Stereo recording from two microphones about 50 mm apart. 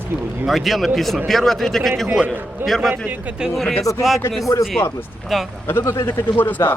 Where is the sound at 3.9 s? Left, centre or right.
Left.